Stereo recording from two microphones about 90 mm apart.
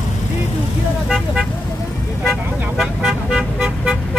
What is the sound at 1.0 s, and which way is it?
Vehicle, centre (ahead or behind).